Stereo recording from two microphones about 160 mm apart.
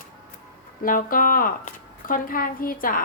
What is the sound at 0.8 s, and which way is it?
A woman's voice, 60° left (ahead or behind).